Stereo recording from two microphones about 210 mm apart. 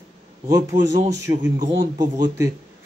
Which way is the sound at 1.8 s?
20° right (ahead or behind).